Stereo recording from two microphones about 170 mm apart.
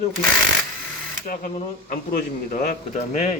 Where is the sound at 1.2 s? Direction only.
55° left (ahead or behind).